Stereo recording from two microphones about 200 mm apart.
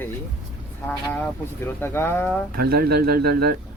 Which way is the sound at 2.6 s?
50° right (ahead or behind).